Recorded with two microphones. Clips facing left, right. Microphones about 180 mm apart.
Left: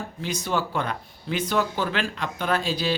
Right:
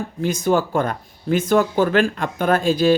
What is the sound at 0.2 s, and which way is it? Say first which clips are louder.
Speech: right 9 dB; 50° right (ahead or behind).